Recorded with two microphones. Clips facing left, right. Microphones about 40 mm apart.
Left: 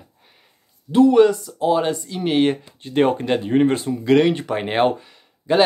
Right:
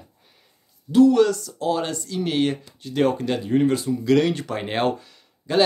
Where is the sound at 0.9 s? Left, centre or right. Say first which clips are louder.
Left 2 dB; left.